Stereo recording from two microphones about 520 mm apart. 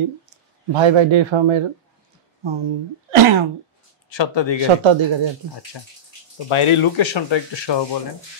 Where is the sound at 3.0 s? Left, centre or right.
Right.